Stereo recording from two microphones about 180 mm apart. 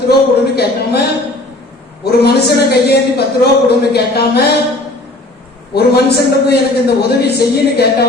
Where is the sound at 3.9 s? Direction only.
65° left (ahead or behind).